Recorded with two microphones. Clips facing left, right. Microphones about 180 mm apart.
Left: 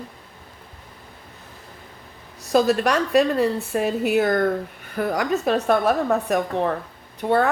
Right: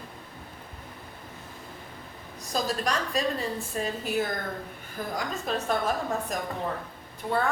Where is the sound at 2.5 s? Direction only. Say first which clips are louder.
Left 10 dB; 70° left (ahead or behind).